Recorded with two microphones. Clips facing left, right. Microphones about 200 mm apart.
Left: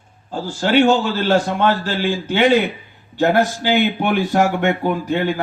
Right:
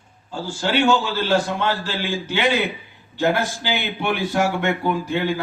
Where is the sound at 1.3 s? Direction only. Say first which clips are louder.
Left 5 dB; 50° left (ahead or behind).